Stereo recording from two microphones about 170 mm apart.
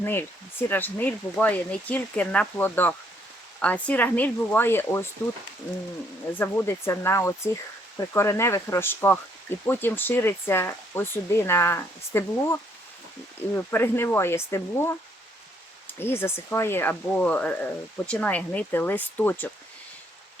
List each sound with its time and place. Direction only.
0.0 s speech: 10° left (ahead or behind)
6.3 s speech: 10° left (ahead or behind)
13.7 s speech: 15° left (ahead or behind)
16.0 s speech: 15° left (ahead or behind)